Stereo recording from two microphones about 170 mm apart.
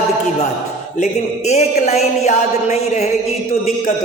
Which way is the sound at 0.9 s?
40° left (ahead or behind).